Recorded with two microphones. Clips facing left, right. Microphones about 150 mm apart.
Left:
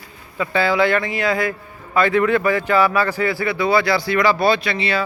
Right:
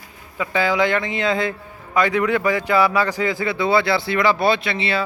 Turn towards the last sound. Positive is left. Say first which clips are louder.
# left 1 dB
turn(degrees=-25)  # may be behind; listen again after turning